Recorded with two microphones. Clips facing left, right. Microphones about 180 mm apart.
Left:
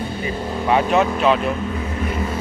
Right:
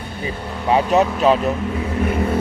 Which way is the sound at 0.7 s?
35° right (ahead or behind).